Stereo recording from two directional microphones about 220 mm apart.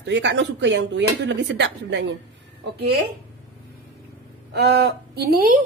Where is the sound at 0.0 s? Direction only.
55° right (ahead or behind).